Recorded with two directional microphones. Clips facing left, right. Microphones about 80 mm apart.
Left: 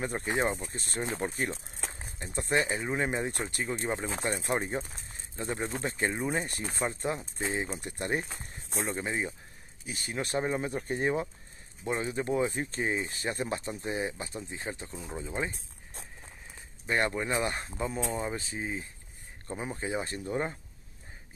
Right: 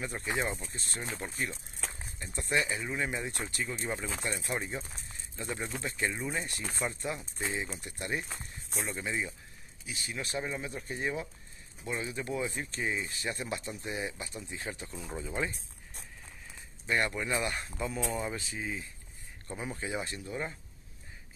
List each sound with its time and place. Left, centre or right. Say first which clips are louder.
0.0 s speech: left 4 dB; left
15.0 s speech: left 1 dB; centre
16.2 s speech: left 1 dB; left